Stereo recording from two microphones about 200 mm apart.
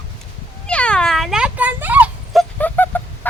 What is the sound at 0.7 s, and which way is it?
Cat, 5° left (ahead or behind).